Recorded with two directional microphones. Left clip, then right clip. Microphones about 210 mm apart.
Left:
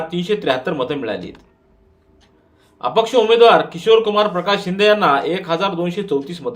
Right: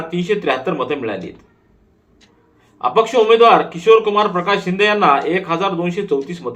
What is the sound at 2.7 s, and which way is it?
Speech, 45° left (ahead or behind).